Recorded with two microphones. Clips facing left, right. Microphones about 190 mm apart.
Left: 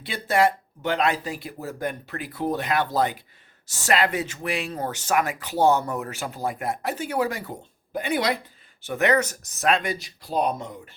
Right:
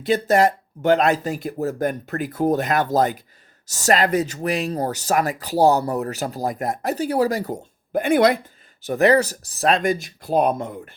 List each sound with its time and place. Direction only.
0.0 s speech: 40° right (ahead or behind)
8.8 s speech: 35° right (ahead or behind); by 10.8 s 55° right (ahead or behind)